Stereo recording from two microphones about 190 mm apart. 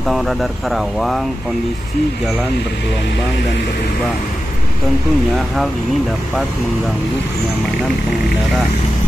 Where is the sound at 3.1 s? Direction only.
65° left (ahead or behind).